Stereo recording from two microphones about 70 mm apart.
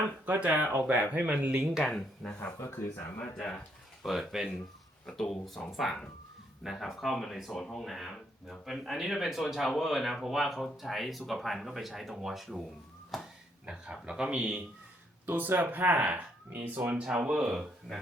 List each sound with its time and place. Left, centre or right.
0.3 s speech: right
1.4 s a man's voice: centre
2.0 s speech: centre
2.6 s speech: left
3.2 s speech: centre
4.0 s speech: centre
5.0 s speech: centre
7.6 s speech: centre
7.9 s speech: centre
13.7 s a man's voice: centre
15.3 s a man's voice: right; by 17.7 s centre